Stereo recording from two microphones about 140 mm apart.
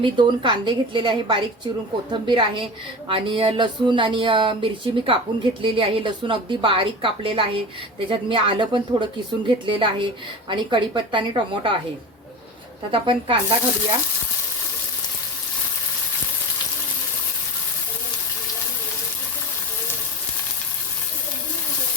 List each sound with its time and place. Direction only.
0.0 s speech: 35° right (ahead or behind)
12.9 s speech: 40° right (ahead or behind)